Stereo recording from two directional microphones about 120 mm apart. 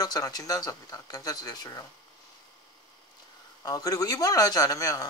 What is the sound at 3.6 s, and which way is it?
Speech, 30° left (ahead or behind).